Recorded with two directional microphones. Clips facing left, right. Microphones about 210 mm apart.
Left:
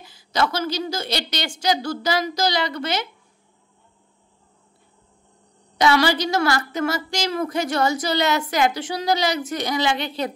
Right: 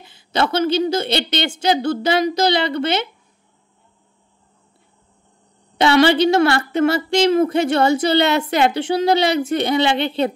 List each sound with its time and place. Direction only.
0.0 s a woman's voice: 25° right (ahead or behind)
5.8 s a woman's voice: 25° right (ahead or behind)